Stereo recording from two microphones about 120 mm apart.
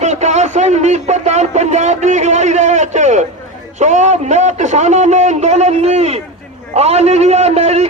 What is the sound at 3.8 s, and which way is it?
A man's voice, 75° right (ahead or behind).